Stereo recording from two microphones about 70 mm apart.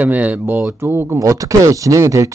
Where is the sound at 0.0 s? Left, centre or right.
Right.